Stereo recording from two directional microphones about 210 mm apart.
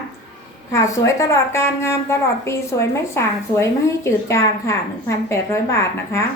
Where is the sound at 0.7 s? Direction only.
15° left (ahead or behind).